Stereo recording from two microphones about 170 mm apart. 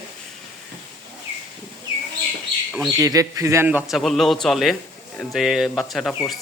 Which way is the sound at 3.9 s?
Centre (ahead or behind).